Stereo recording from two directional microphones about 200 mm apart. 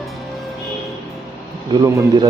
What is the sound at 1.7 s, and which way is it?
Speech, 15° right (ahead or behind).